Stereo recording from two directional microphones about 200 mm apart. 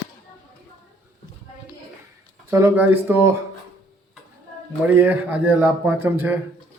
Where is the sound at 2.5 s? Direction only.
10° right (ahead or behind).